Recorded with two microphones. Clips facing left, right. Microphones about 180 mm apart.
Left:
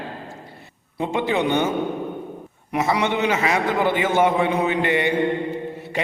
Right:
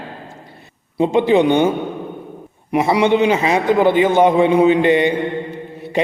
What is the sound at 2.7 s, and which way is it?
A man's voice, 15° right (ahead or behind).